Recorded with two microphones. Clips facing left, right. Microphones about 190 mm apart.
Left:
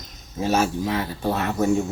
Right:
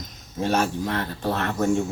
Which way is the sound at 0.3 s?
5° left (ahead or behind).